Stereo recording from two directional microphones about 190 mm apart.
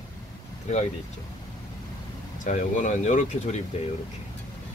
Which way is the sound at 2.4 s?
40° left (ahead or behind).